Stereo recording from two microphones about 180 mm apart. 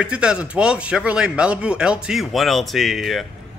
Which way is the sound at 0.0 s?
5° right (ahead or behind).